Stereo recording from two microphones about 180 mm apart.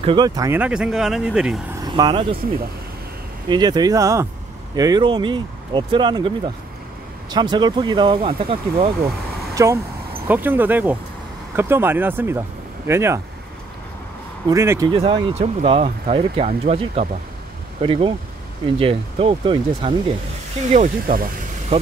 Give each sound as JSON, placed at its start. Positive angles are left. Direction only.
{"t": 0.0, "sound": "speech", "side_deg": -25}
{"t": 0.5, "sound": "speech", "side_deg": -5}
{"t": 1.9, "sound": "speech", "side_deg": -25}
{"t": 3.4, "sound": "speech", "side_deg": -25}
{"t": 9.6, "sound": "speech", "side_deg": -15}
{"t": 14.5, "sound": "speech", "side_deg": -15}
{"t": 20.7, "sound": "speech", "side_deg": -50}